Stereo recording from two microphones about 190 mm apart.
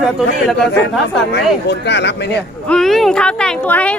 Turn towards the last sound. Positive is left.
turn(degrees=5)  # may be behind; listen again after turning